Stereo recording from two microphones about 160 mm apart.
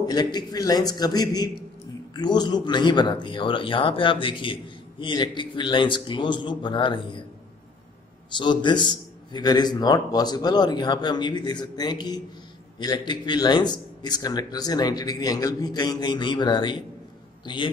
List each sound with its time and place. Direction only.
0.0 s a man's voice: 25° left (ahead or behind)
8.3 s speech: 30° left (ahead or behind)